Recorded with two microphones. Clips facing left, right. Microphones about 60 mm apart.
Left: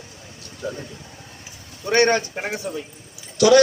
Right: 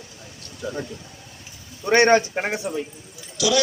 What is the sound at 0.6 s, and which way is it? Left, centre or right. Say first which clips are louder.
Speech: left 1 dB; left.